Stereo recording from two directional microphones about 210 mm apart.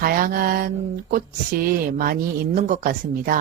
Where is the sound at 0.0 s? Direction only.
45° right (ahead or behind).